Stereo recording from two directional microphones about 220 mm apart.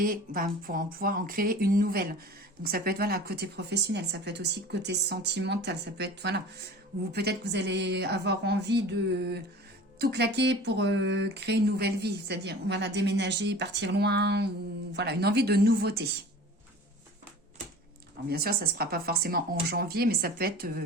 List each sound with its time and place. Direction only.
0.0 s speech: 40° right (ahead or behind)
18.3 s speech: 45° right (ahead or behind)